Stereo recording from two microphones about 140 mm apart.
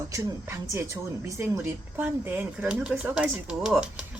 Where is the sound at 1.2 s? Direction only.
15° right (ahead or behind).